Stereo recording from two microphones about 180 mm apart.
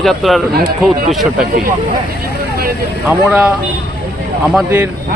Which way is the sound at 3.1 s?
5° right (ahead or behind).